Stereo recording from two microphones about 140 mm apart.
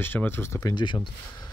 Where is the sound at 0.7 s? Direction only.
35° left (ahead or behind).